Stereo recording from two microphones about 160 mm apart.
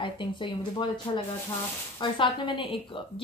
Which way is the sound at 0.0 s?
30° left (ahead or behind).